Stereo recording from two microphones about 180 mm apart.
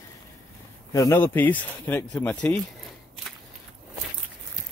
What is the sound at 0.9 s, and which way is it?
Speech, 15° left (ahead or behind).